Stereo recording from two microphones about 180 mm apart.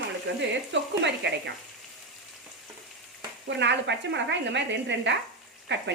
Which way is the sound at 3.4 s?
75° right (ahead or behind).